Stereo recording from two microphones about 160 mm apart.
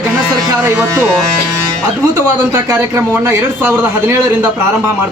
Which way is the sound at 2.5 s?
15° right (ahead or behind).